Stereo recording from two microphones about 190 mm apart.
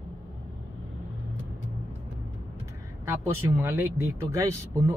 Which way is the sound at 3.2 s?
10° right (ahead or behind).